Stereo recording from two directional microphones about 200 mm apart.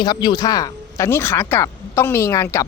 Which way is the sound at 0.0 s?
25° left (ahead or behind).